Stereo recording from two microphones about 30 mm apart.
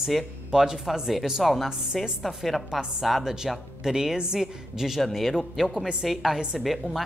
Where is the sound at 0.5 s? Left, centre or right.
Centre.